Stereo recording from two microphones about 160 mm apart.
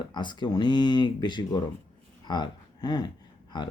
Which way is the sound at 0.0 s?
30° left (ahead or behind).